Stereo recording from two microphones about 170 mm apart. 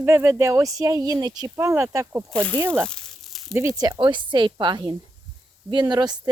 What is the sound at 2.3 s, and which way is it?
Speech, 10° left (ahead or behind).